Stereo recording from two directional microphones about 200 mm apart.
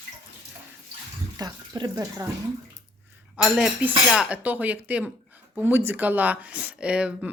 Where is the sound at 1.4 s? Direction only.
20° right (ahead or behind).